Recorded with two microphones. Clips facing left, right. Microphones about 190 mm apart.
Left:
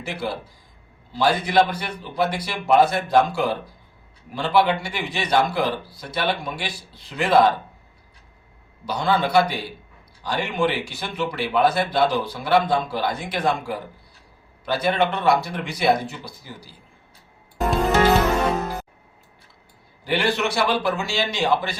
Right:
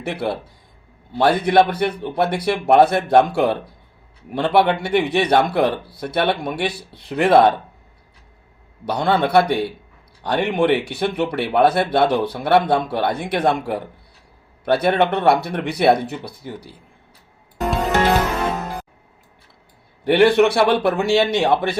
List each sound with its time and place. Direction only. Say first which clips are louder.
0.0 s speech: right 5 dB; 60° right (ahead or behind)
8.9 s speech: right 3 dB; 60° right (ahead or behind)
20.1 s speech: right 9 dB; 60° right (ahead or behind)